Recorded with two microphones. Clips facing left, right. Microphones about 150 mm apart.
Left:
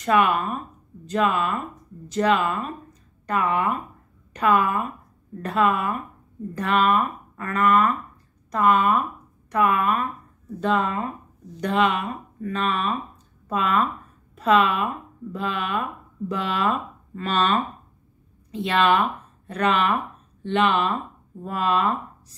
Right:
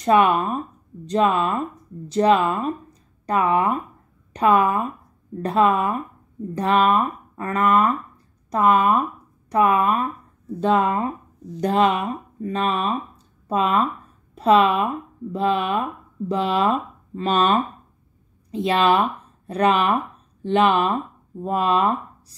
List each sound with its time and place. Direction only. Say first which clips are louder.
0.0 s speech: right 3 dB; 30° right (ahead or behind)